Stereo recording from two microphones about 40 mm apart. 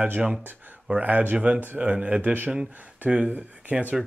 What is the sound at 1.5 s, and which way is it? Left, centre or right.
Speech, right.